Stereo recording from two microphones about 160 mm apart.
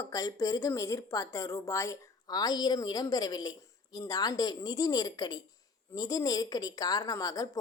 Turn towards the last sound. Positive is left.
turn(degrees=25)  # may be behind; listen again after turning